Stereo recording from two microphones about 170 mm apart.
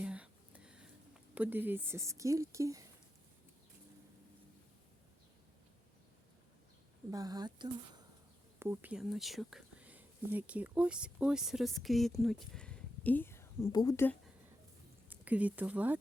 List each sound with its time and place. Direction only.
0.0 s a sound: 5° right (ahead or behind)
1.4 s speech: 10° right (ahead or behind)
7.1 s speech: 20° right (ahead or behind); by 14.2 s 15° left (ahead or behind)
15.1 s speech: 10° right (ahead or behind)